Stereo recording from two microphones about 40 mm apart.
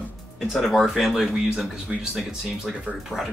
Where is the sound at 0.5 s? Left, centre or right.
Centre.